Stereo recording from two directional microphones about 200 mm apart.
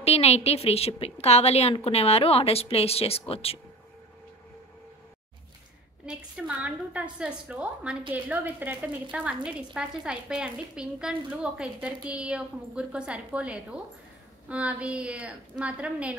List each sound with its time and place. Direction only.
0.0 s a woman's voice: 30° left (ahead or behind)
6.0 s a woman's voice: 5° right (ahead or behind)